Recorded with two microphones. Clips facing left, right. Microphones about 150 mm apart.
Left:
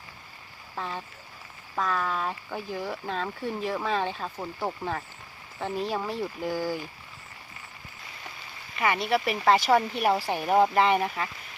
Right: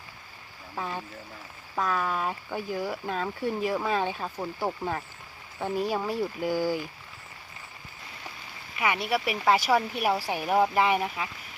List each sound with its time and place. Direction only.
0.8 s speech: 10° right (ahead or behind)
8.8 s speech: 5° right (ahead or behind)